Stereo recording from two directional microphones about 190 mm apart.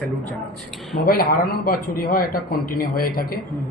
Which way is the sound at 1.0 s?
50° left (ahead or behind).